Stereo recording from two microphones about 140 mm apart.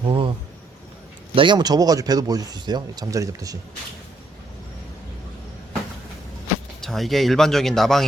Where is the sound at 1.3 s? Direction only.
35° right (ahead or behind).